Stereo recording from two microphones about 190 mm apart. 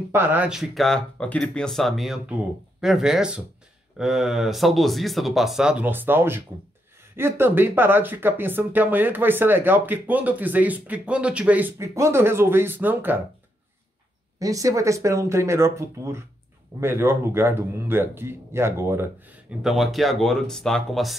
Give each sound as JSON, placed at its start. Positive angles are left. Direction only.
{"t": 0.1, "sound": "speech", "side_deg": -10}
{"t": 14.4, "sound": "speech", "side_deg": -15}
{"t": 19.6, "sound": "speech", "side_deg": 0}